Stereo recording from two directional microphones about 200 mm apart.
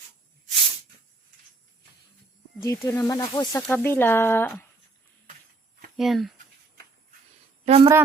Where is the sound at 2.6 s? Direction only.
15° left (ahead or behind).